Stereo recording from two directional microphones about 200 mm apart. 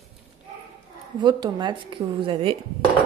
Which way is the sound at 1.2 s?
20° right (ahead or behind).